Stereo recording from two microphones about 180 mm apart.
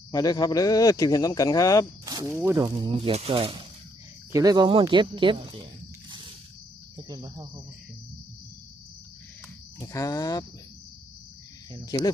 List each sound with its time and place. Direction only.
0.1 s speech: 20° left (ahead or behind)
2.3 s speech: 15° right (ahead or behind); by 3.7 s 30° right (ahead or behind)
4.3 s speech: 20° right (ahead or behind)
6.9 s speech: 20° right (ahead or behind)
9.8 s speech: 20° left (ahead or behind)
11.9 s speech: 20° left (ahead or behind)